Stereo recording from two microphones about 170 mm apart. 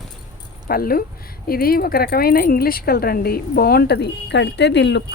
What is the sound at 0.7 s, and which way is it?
Speech, 60° left (ahead or behind).